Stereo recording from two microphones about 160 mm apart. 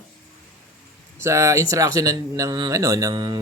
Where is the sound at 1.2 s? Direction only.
15° right (ahead or behind).